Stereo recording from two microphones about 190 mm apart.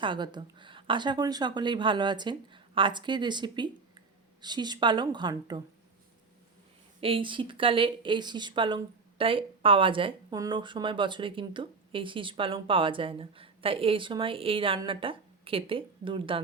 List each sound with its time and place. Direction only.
0.0 s speech: 25° right (ahead or behind)
7.0 s speech: 25° right (ahead or behind)